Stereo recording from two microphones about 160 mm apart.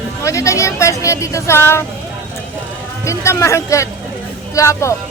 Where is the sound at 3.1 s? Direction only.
20° left (ahead or behind).